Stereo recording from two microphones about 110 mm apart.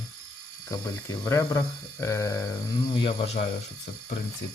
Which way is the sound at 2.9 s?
50° left (ahead or behind).